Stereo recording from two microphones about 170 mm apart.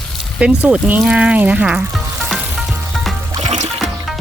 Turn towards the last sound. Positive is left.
turn(degrees=-40)  # may be behind; listen again after turning